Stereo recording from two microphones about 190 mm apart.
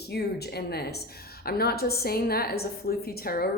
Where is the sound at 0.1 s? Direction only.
60° left (ahead or behind).